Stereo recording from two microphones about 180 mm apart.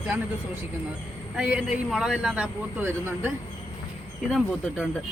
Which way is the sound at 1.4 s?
5° right (ahead or behind).